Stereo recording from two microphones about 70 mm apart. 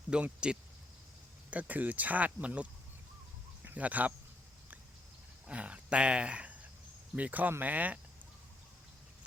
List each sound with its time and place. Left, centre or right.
0.1 s speech: centre
5.5 s speech: centre